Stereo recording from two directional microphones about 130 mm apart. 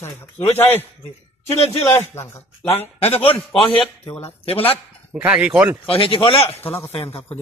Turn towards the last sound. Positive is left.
turn(degrees=45)  # may be behind; listen again after turning